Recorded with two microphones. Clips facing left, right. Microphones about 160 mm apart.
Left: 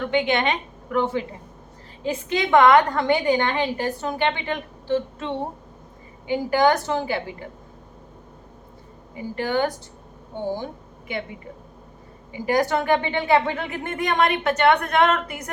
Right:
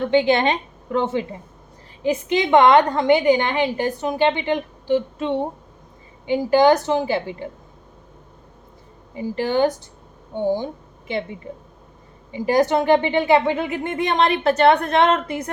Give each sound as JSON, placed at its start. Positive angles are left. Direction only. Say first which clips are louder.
{"t": 0.0, "sound": "a woman's voice", "louder": "right 5 dB", "side_deg": -30}
{"t": 9.1, "sound": "a woman's voice", "louder": "right 3 dB", "side_deg": -25}
{"t": 12.3, "sound": "a woman's voice", "louder": "right 4 dB", "side_deg": -25}